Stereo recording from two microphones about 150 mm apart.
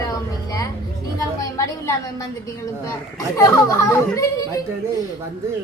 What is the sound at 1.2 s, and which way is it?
A woman's voice, 20° left (ahead or behind).